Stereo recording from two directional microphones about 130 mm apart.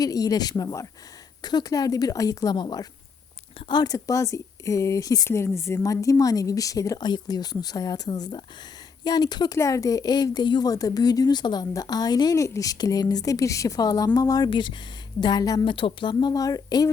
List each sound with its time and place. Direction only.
0.0 s speech: 30° left (ahead or behind)
15.6 s speech: 40° left (ahead or behind)